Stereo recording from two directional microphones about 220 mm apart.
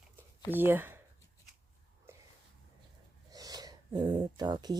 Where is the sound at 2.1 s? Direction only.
10° right (ahead or behind).